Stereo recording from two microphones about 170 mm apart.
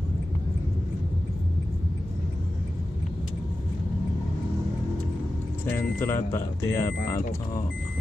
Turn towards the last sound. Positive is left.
turn(degrees=15)  # may be behind; listen again after turning